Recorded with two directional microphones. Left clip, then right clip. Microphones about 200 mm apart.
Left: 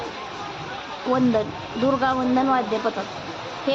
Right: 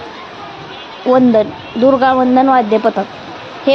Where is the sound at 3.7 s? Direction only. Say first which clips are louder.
Right 12 dB; 35° right (ahead or behind).